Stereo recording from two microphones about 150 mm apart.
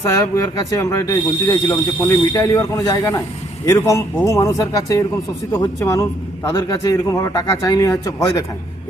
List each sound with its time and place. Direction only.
0.8 s speech: 20° left (ahead or behind)